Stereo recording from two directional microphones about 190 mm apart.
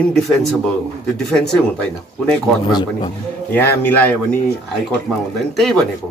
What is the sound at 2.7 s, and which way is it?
Speech, 20° left (ahead or behind).